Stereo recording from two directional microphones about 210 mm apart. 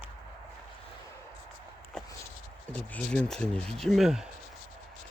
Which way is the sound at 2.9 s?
5° left (ahead or behind).